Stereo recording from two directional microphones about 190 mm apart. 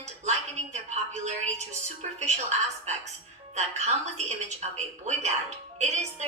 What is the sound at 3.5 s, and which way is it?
A woman's voice, 35° right (ahead or behind).